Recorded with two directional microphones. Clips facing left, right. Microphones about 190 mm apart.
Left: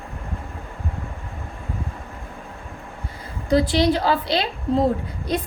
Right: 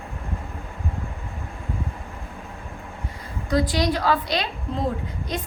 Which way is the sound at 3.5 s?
25° left (ahead or behind).